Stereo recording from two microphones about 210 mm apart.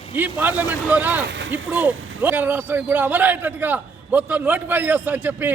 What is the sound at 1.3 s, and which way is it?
Speech, 60° right (ahead or behind).